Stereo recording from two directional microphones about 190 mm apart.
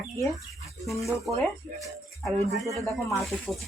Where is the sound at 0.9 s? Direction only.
Centre (ahead or behind).